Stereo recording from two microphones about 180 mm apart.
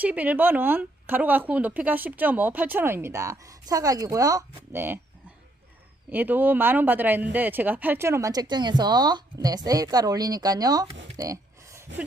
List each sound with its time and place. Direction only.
0.0 s a woman's voice: 10° right (ahead or behind)
6.1 s speech: 10° right (ahead or behind)
11.2 s a sound: 15° right (ahead or behind)